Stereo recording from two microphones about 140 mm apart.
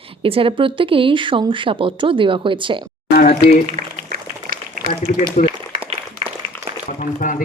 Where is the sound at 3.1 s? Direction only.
90° left.